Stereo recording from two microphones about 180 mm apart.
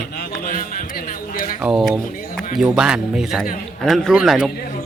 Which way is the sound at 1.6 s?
Centre (ahead or behind).